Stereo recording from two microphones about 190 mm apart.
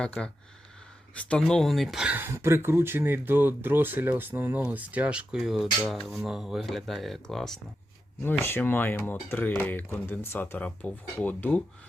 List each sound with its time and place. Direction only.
0.0 s speech: 5° left (ahead or behind)